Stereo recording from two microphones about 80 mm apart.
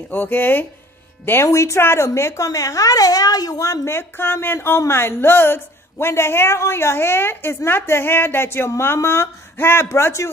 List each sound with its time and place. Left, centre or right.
0.1 s speech: left
1.5 s a woman's voice: left